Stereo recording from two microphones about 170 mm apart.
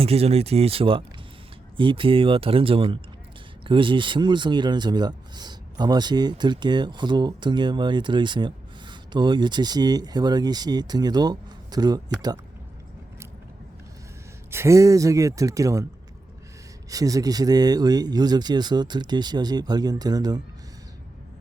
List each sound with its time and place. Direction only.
0.0 s speech: 35° right (ahead or behind)
14.5 s speech: 15° right (ahead or behind)
16.9 s speech: 20° right (ahead or behind)